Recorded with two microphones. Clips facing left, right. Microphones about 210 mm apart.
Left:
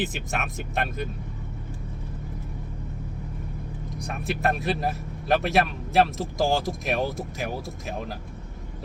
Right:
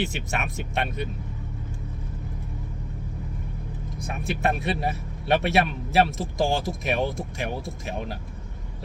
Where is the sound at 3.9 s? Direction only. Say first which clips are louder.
Even; centre (ahead or behind).